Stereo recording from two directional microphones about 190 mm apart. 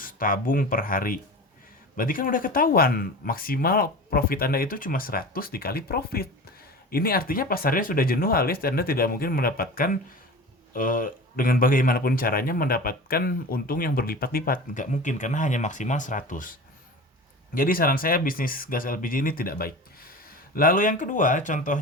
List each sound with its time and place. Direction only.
0.0 s speech: 45° left (ahead or behind)